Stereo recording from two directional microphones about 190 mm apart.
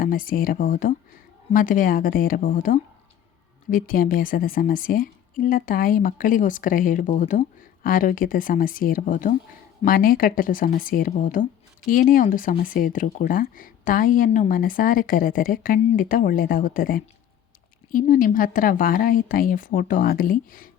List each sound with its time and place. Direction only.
0.0 s a woman's voice: 50° left (ahead or behind)